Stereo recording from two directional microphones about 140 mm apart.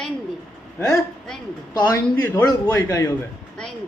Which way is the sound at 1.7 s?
25° left (ahead or behind).